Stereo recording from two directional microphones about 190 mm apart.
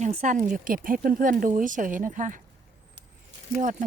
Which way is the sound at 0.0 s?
40° right (ahead or behind).